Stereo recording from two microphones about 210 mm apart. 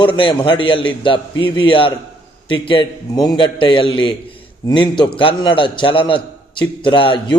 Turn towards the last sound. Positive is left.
turn(degrees=25)  # may be behind; listen again after turning